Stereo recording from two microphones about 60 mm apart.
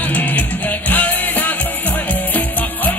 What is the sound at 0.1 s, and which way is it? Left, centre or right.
Music, left.